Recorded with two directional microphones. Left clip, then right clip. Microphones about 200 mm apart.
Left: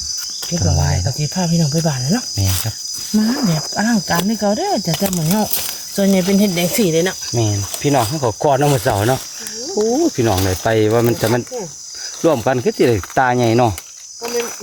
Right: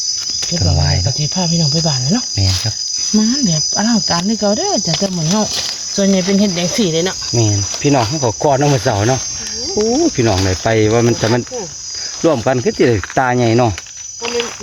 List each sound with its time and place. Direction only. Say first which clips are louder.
0.5 s speech: even; 5° right (ahead or behind)
1.2 s cricket: right 1 dB; 15° left (ahead or behind)
3.8 s speech: left 1 dB; 25° left (ahead or behind)
4.9 s cricket: right 2 dB; 15° left (ahead or behind)
6.0 s speech: right 1 dB; 25° left (ahead or behind)
7.3 s speech: right 4 dB; 10° right (ahead or behind)